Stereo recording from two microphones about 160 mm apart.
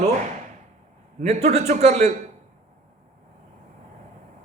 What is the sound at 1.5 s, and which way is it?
Speech, 45° right (ahead or behind).